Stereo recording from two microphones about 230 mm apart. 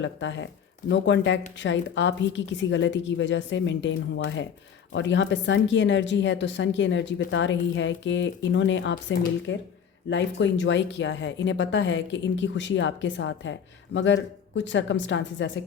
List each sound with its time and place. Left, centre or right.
0.0 s speech: left
4.9 s speech: left